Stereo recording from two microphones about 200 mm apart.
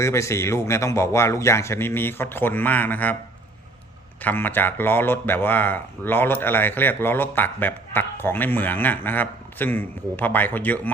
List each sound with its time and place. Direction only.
0.0 s a man's voice: 15° left (ahead or behind)
4.2 s a man's voice: 10° left (ahead or behind)